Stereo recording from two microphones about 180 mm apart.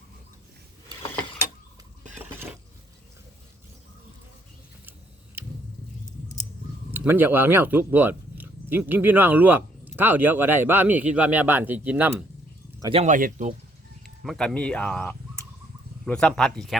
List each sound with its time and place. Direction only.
6.9 s speech: 10° right (ahead or behind)
12.9 s speech: 40° right (ahead or behind)
14.0 s speech: centre (ahead or behind)